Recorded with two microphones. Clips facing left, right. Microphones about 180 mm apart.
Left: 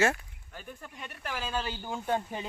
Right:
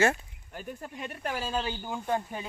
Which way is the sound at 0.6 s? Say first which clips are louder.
Right 6 dB; 40° right (ahead or behind).